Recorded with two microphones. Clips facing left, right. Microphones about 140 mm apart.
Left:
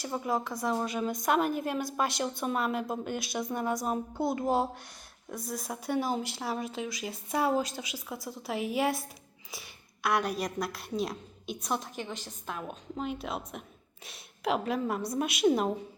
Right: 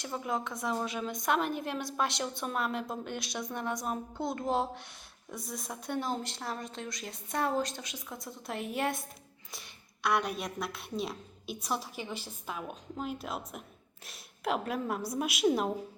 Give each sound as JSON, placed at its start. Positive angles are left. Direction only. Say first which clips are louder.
{"t": 0.0, "sound": "a woman's voice", "louder": "left 3 dB", "side_deg": 5}